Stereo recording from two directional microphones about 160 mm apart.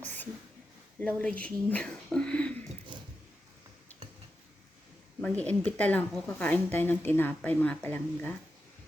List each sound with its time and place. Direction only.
0.0 s a sound: 10° left (ahead or behind)
0.9 s speech: 10° left (ahead or behind)
2.9 s vehicle: 30° right (ahead or behind)
5.2 s a woman's voice: 10° left (ahead or behind)